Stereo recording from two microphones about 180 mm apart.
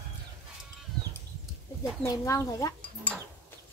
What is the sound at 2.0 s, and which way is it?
Speech, 15° left (ahead or behind).